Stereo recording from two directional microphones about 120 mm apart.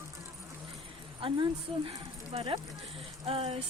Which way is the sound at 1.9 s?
50° right (ahead or behind).